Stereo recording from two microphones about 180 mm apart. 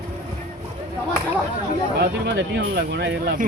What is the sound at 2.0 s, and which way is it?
Speech, 75° right (ahead or behind).